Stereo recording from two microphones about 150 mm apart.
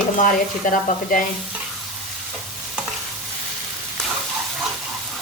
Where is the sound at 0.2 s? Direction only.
65° left (ahead or behind).